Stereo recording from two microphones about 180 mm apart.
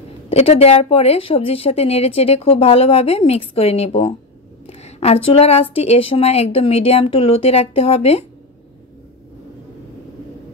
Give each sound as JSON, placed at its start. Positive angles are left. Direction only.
{"t": 0.3, "sound": "speech", "side_deg": 35}